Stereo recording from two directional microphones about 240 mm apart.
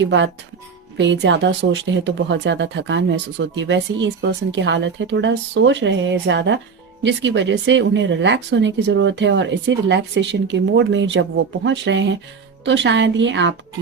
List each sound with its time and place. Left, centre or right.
0.0 s speech: right